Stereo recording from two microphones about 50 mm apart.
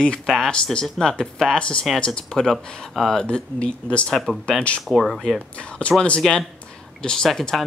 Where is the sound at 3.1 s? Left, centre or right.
Centre.